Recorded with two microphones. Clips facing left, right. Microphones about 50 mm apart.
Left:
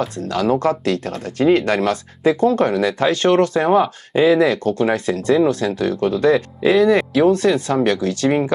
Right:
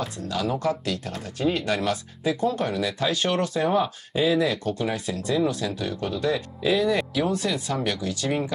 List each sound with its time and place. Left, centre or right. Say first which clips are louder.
0.0 s speech: left 8 dB; left